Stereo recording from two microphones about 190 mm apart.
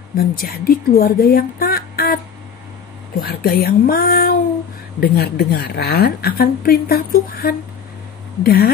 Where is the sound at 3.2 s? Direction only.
50° left (ahead or behind).